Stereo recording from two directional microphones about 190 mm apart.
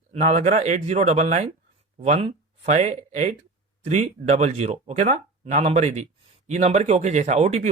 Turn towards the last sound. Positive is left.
turn(degrees=-35)  # may be behind; listen again after turning